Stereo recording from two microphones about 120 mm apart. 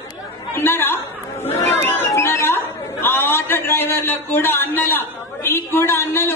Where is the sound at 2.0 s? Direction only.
20° left (ahead or behind).